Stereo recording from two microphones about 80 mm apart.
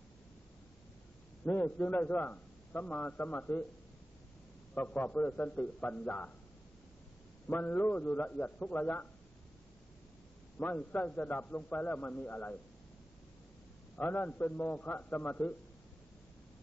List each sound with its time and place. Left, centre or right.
1.4 s a man's voice: left
4.7 s a man's voice: left
7.4 s a man's voice: left
10.6 s a man's voice: left
13.9 s a man's voice: left